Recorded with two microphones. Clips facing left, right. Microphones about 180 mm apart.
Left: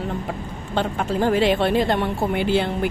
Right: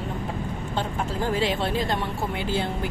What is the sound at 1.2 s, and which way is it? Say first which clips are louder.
Speech: left 7 dB; 65° left (ahead or behind).